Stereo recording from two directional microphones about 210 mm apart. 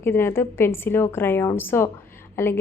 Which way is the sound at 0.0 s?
10° left (ahead or behind).